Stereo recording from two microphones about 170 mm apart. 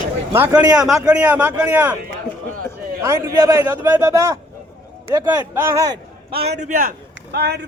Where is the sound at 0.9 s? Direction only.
5° right (ahead or behind).